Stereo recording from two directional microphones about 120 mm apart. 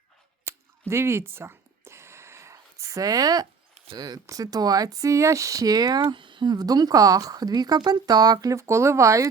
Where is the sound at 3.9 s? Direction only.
35° right (ahead or behind).